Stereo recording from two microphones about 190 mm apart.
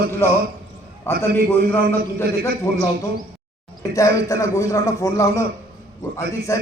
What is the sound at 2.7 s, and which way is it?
Speech, 15° left (ahead or behind).